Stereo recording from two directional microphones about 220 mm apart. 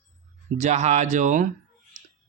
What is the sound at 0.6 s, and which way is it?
Speech, 30° right (ahead or behind).